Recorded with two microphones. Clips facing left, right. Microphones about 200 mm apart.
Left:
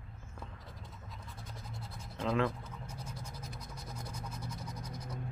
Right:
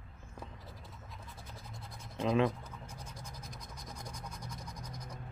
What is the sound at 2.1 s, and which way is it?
Scratch, 15° right (ahead or behind).